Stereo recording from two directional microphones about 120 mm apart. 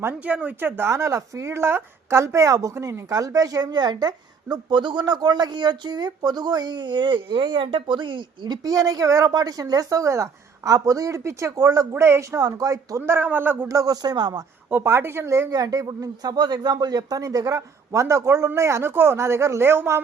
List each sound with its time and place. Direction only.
0.0 s speech: 10° right (ahead or behind); by 13.0 s 30° right (ahead or behind)
13.0 s speech: 20° right (ahead or behind)
13.7 s speech: 30° right (ahead or behind)
14.7 s speech: 20° right (ahead or behind)